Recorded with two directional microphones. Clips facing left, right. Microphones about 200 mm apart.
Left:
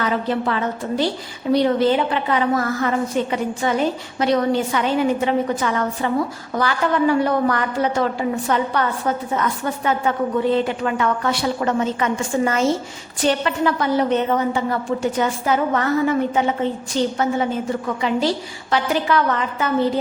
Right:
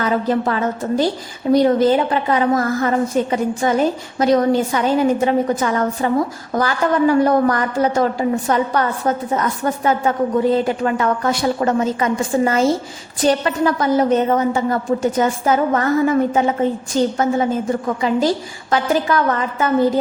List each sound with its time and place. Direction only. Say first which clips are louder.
0.0 s a woman's voice: right 3 dB; 40° right (ahead or behind)